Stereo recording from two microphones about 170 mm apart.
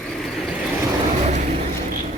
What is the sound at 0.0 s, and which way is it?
Vehicle, centre (ahead or behind).